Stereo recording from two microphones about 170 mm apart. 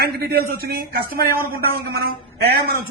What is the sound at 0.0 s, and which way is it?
A man's voice, 65° right (ahead or behind).